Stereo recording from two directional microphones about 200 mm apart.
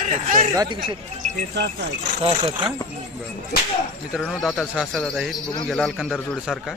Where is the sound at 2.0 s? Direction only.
35° right (ahead or behind).